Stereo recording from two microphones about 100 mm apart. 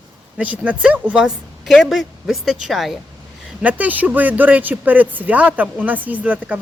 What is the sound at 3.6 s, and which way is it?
Speech, 15° right (ahead or behind).